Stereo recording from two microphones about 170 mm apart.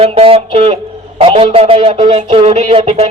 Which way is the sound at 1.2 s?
35° right (ahead or behind).